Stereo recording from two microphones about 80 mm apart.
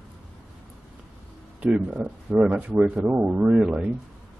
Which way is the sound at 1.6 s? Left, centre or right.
Centre.